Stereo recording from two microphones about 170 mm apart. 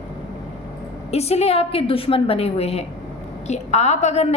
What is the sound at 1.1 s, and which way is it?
A woman's voice, 40° left (ahead or behind).